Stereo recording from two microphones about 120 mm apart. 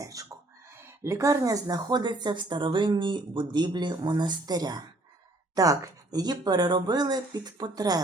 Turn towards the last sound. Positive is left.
turn(degrees=-35)  # may be behind; listen again after turning